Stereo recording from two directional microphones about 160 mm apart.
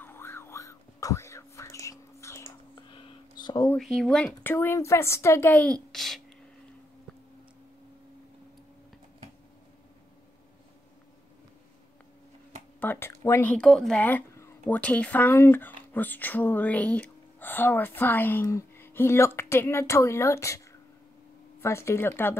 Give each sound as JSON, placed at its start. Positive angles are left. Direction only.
{"t": 0.0, "sound": "whispering", "side_deg": 15}
{"t": 2.7, "sound": "a sound", "side_deg": 30}
{"t": 3.7, "sound": "speech", "side_deg": 0}
{"t": 12.8, "sound": "speech", "side_deg": 15}